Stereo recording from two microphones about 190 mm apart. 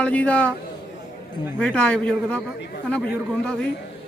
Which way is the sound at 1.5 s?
5° left (ahead or behind).